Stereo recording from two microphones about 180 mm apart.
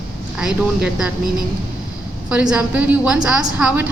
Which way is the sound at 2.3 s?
5° right (ahead or behind).